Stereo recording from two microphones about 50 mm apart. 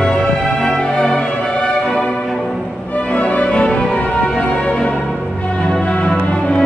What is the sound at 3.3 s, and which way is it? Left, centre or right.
Music, left.